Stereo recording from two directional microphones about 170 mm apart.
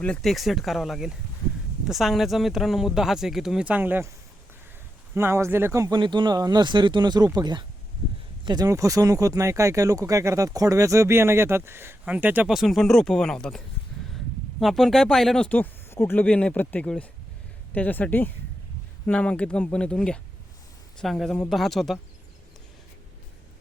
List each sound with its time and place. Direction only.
0.0 s speech: 5° left (ahead or behind)
5.1 s speech: 15° right (ahead or behind); by 13.6 s 5° left (ahead or behind)
14.6 s speech: centre (ahead or behind)